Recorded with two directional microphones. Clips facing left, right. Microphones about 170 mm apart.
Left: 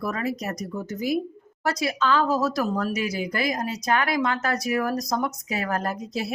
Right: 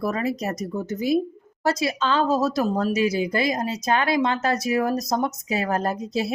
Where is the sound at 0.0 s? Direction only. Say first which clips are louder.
Right 3 dB; 25° right (ahead or behind).